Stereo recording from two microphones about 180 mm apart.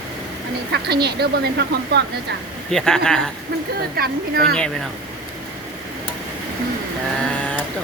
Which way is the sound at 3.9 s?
60° right (ahead or behind).